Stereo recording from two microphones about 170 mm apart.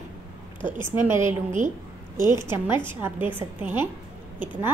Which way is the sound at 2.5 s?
10° right (ahead or behind).